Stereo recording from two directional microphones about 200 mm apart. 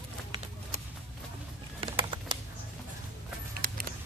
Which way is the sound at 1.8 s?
25° right (ahead or behind).